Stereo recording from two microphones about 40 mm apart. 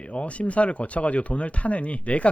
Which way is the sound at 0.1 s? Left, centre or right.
Left.